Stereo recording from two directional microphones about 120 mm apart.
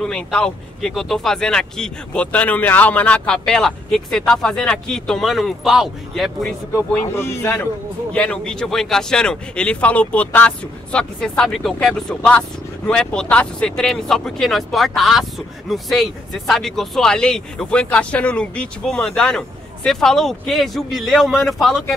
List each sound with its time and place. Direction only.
0.0 s speech: 5° left (ahead or behind)
6.9 s speech: 20° left (ahead or behind); by 21.8 s centre (ahead or behind)